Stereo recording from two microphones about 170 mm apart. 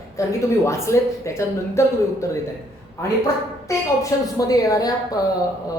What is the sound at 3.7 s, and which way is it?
A woman's voice, 20° left (ahead or behind).